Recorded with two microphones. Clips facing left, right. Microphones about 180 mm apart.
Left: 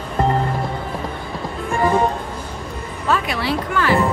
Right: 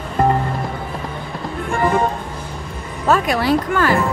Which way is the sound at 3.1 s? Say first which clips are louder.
Right 5 dB; 45° right (ahead or behind).